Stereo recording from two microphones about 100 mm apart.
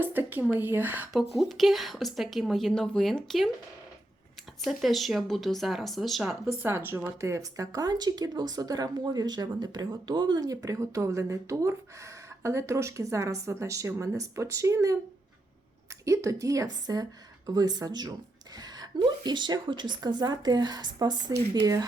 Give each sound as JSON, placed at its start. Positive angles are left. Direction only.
{"t": 0.0, "sound": "a woman's voice", "side_deg": -20}
{"t": 1.1, "sound": "a woman's voice", "side_deg": 0}
{"t": 4.6, "sound": "a woman's voice", "side_deg": 0}
{"t": 6.4, "sound": "a woman's voice", "side_deg": -25}
{"t": 16.0, "sound": "a woman's voice", "side_deg": -30}